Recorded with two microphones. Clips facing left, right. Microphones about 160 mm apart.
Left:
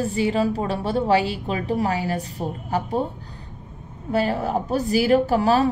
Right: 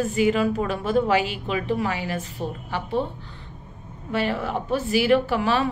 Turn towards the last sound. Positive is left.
turn(degrees=40)  # may be behind; listen again after turning